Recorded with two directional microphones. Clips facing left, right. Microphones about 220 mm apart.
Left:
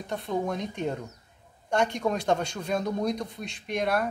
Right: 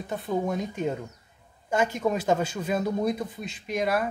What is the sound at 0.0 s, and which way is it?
A man's voice, 5° right (ahead or behind).